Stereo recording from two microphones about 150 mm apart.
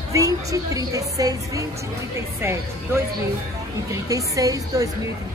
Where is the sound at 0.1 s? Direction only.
20° right (ahead or behind).